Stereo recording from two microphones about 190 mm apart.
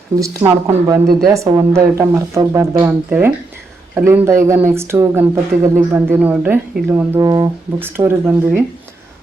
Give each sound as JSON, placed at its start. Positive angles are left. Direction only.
{"t": 0.2, "sound": "speech", "side_deg": -15}